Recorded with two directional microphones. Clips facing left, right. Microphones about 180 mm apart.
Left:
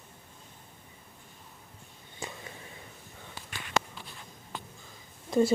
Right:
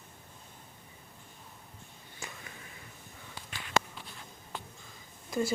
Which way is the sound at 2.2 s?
30° left (ahead or behind).